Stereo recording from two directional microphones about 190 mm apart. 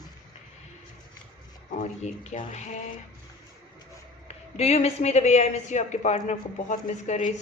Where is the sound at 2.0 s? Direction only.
35° left (ahead or behind).